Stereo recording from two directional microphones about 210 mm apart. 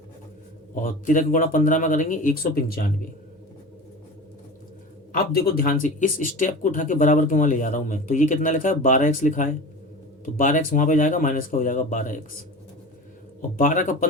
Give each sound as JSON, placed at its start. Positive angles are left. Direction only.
{"t": 0.8, "sound": "speech", "side_deg": 40}
{"t": 5.1, "sound": "speech", "side_deg": 45}
{"t": 13.6, "sound": "speech", "side_deg": 40}